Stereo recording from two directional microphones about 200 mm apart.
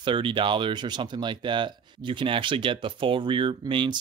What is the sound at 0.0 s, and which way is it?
Speech, 25° right (ahead or behind).